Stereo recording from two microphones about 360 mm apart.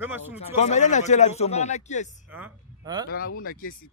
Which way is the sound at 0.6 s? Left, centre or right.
Centre.